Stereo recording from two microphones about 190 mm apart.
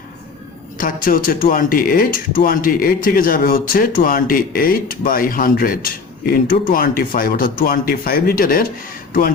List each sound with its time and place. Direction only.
0.8 s speech: 45° left (ahead or behind)